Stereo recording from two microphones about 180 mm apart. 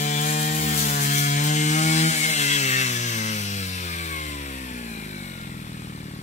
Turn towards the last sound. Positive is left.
turn(degrees=40)  # may be behind; listen again after turning